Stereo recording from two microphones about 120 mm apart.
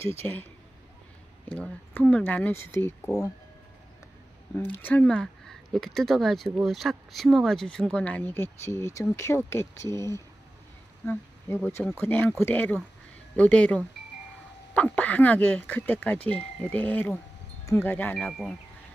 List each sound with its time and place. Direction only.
0.2 s speech: 15° left (ahead or behind)
1.5 s speech: 10° left (ahead or behind)
4.6 s speech: 15° left (ahead or behind)